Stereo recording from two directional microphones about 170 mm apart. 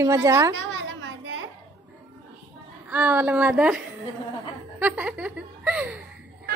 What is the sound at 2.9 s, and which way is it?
Speech, 10° right (ahead or behind).